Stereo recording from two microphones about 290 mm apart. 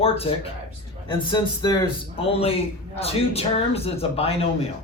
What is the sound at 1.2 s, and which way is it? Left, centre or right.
A man's voice, centre.